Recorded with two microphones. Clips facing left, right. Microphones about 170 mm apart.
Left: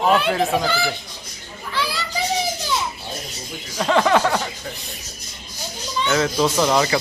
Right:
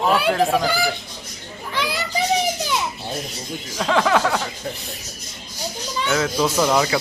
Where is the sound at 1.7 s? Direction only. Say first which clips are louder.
Right 1 dB; 20° right (ahead or behind).